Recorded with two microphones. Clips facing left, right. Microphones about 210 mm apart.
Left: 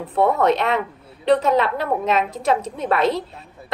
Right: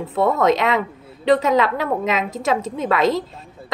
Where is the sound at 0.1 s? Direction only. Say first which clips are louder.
Even; 90° right.